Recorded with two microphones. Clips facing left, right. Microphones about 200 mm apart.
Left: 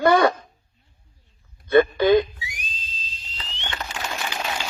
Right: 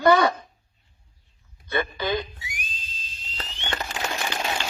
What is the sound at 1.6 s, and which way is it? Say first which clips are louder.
Speech: left 11 dB; 50° left (ahead or behind).